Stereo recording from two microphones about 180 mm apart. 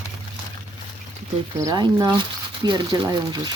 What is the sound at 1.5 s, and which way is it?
Speech, 20° right (ahead or behind).